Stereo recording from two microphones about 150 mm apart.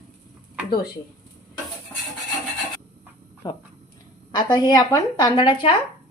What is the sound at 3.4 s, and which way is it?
Speech, 25° left (ahead or behind).